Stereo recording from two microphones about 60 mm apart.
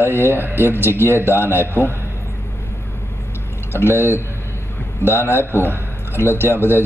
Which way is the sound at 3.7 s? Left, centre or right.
Left.